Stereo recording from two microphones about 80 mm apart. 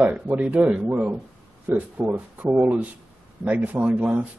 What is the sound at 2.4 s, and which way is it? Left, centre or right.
A man's voice, centre.